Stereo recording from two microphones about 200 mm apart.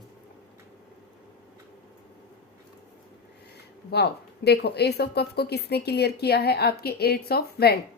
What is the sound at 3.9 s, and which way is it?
Speech, 55° left (ahead or behind).